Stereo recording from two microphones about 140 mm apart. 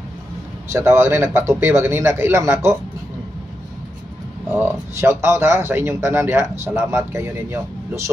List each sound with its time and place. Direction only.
0.7 s speech: 20° right (ahead or behind)
4.5 s speech: 15° right (ahead or behind)